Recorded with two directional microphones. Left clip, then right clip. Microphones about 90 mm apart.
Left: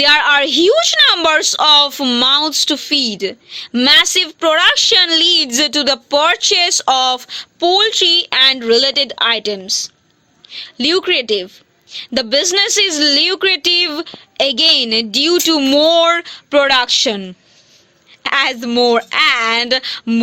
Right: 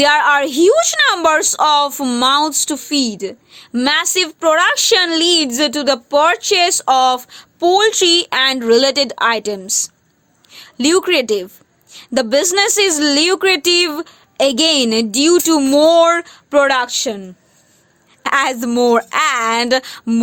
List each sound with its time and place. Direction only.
0.0 s a woman's voice: 35° right (ahead or behind); by 7.4 s 5° right (ahead or behind)
7.6 s a woman's voice: 35° right (ahead or behind)
10.8 s a woman's voice: 50° right (ahead or behind); by 16.6 s 20° right (ahead or behind)
16.8 s speech: 10° left (ahead or behind)
18.2 s a woman's voice: 35° right (ahead or behind)